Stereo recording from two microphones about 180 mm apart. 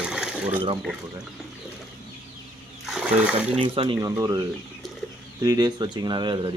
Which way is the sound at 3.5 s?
30° right (ahead or behind).